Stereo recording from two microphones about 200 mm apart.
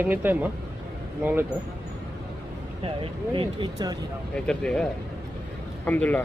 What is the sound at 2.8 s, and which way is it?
Speech, 25° right (ahead or behind).